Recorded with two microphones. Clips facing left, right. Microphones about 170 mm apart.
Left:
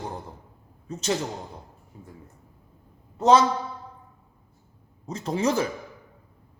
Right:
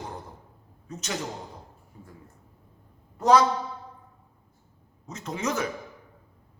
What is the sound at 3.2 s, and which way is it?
Speech, 25° left (ahead or behind).